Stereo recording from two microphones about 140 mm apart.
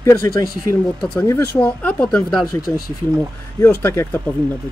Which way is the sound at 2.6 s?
90° left.